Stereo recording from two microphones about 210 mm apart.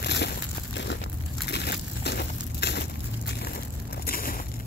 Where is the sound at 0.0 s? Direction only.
55° left (ahead or behind).